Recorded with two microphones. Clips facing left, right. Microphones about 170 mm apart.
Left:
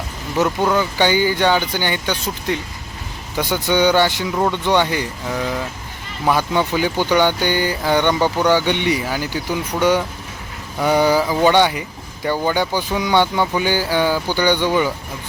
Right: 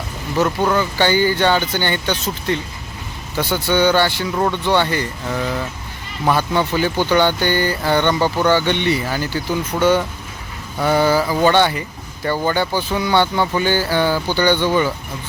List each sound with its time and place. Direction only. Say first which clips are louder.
0.4 s speech: even; centre (ahead or behind)
0.8 s speech: even; 15° left (ahead or behind)